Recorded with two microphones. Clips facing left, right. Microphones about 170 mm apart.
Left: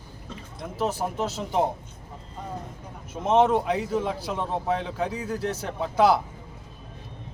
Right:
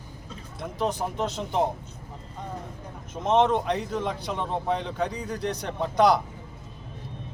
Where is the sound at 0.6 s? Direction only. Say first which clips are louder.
Even; 5° left (ahead or behind).